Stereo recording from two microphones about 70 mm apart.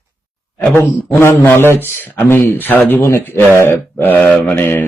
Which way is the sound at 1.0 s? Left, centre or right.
Left.